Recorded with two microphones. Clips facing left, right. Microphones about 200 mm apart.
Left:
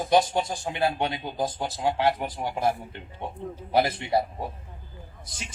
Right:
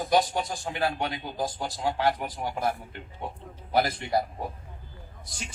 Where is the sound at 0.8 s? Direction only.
30° left (ahead or behind).